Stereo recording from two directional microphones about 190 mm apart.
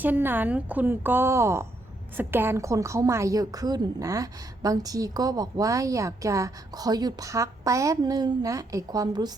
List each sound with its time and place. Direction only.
0.0 s a woman's voice: 10° right (ahead or behind)